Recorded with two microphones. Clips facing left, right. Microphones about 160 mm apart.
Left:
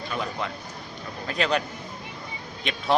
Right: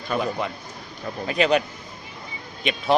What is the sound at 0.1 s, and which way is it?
Speech, 45° right (ahead or behind).